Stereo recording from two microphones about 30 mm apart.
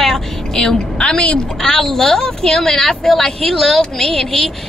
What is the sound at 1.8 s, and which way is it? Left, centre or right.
Speech, centre.